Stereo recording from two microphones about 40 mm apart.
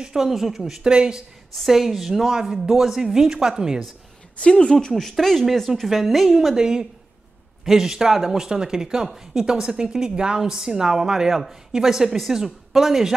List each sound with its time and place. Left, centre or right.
0.0 s speech: centre
0.8 s speech: right
1.7 s speech: centre
4.4 s speech: left
4.8 s speech: centre
5.4 s speech: centre